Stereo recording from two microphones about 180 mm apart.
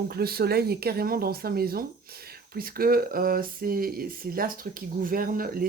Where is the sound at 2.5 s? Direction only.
55° right (ahead or behind).